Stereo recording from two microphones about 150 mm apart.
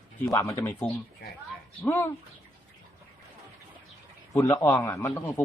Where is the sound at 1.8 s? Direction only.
15° left (ahead or behind).